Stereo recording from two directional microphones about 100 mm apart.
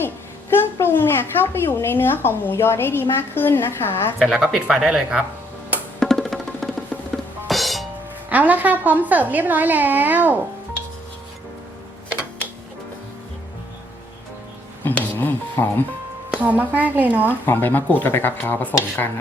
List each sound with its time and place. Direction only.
0.5 s a woman's voice: 20° left (ahead or behind)
4.2 s speech: 5° right (ahead or behind)
6.0 s music: 5° left (ahead or behind)
8.3 s a woman's voice: 15° right (ahead or behind)
14.8 s telephone dialing: 20° left (ahead or behind)
16.3 s a woman's voice: 15° right (ahead or behind)
17.4 s a woman's voice: 20° left (ahead or behind)